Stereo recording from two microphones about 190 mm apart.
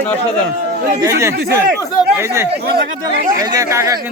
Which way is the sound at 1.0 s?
15° right (ahead or behind).